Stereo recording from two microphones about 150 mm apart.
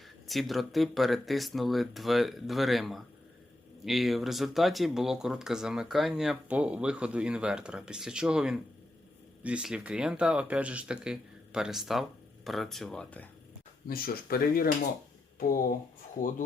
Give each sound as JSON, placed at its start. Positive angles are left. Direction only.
{"t": 0.3, "sound": "speech", "side_deg": 0}
{"t": 13.8, "sound": "speech", "side_deg": 80}
{"t": 15.4, "sound": "speech", "side_deg": 70}